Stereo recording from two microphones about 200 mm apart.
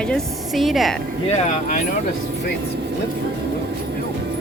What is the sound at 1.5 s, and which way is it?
Speech, 40° left (ahead or behind).